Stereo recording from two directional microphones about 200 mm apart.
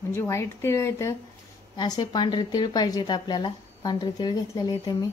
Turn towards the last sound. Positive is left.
turn(degrees=20)  # may be behind; listen again after turning